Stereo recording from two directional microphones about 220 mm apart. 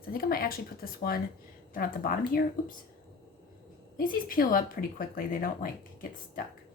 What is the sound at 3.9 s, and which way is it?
Speech, 40° left (ahead or behind).